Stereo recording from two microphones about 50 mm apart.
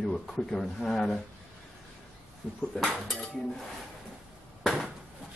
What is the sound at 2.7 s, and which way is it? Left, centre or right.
Speech, centre.